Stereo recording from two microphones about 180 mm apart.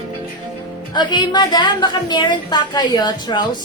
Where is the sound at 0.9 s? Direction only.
25° left (ahead or behind).